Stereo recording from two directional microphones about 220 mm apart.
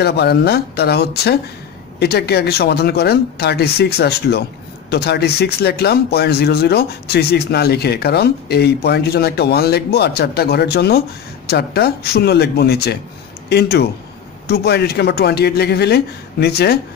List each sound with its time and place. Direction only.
0.0 s speech: 45° left (ahead or behind)